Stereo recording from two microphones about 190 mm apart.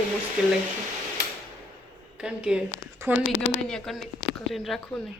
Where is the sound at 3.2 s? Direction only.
90° left.